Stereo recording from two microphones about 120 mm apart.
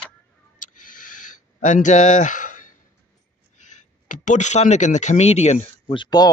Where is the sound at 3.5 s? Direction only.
90° left; by 5.6 s 65° left (ahead or behind).